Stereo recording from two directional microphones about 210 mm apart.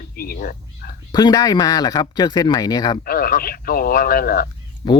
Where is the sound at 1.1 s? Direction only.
20° left (ahead or behind).